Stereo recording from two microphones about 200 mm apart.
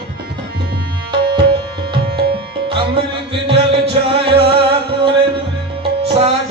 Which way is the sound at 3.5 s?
30° right (ahead or behind).